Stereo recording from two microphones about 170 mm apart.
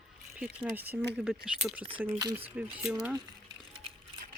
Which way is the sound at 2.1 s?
20° right (ahead or behind).